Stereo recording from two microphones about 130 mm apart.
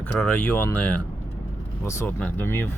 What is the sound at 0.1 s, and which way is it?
Speech, 10° left (ahead or behind).